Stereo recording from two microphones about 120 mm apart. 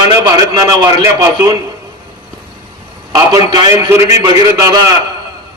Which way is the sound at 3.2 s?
30° right (ahead or behind).